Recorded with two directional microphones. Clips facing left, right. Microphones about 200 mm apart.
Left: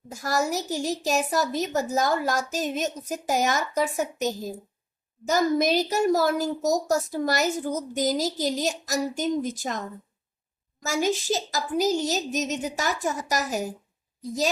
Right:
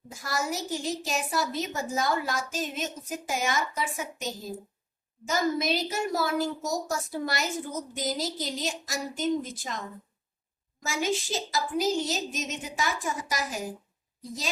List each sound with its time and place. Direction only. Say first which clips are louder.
0.1 s a woman's voice: left 6 dB; 40° left (ahead or behind)
10.8 s a woman's voice: left 5 dB; 40° left (ahead or behind)